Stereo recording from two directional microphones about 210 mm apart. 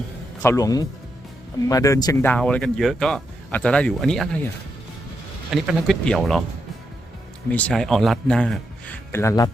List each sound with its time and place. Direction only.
0.4 s speech: 15° left (ahead or behind)
5.5 s speech: centre (ahead or behind)
7.5 s speech: 5° left (ahead or behind)